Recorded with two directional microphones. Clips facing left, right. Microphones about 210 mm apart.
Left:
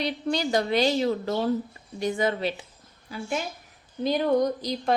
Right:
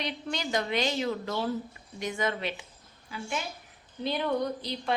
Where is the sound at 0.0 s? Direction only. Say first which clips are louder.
Left 7 dB; 35° left (ahead or behind).